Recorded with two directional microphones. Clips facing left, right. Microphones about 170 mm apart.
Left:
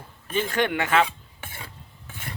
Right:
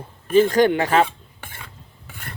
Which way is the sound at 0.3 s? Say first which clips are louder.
Right 9 dB; 35° right (ahead or behind).